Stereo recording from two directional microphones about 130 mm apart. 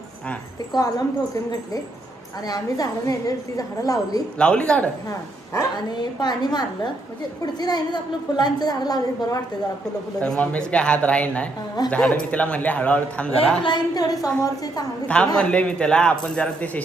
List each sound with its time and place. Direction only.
0.7 s a woman's voice: 30° left (ahead or behind)
2.5 s a woman's voice: 25° left (ahead or behind)
4.4 s a man's voice: 5° left (ahead or behind)
5.5 s a woman's voice: 35° left (ahead or behind)
10.2 s a man's voice: 10° left (ahead or behind)
13.6 s a woman's voice: 35° left (ahead or behind)
15.0 s a man's voice: 10° left (ahead or behind)